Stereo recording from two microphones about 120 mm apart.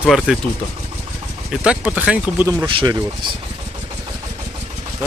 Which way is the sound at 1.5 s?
10° right (ahead or behind).